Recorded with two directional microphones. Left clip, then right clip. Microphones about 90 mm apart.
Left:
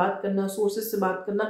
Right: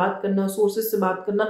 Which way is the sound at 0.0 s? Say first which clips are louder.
Right 2 dB; 25° right (ahead or behind).